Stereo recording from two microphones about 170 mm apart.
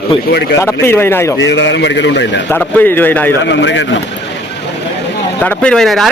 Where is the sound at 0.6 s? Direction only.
15° left (ahead or behind).